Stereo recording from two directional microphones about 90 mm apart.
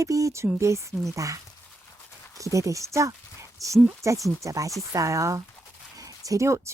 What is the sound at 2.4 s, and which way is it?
A woman's voice, 35° right (ahead or behind).